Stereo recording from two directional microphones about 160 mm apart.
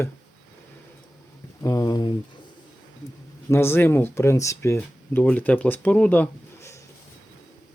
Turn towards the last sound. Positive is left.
turn(degrees=15)  # may be behind; listen again after turning